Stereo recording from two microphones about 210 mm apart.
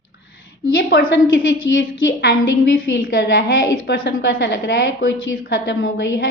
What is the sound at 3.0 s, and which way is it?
A woman's voice, 45° left (ahead or behind).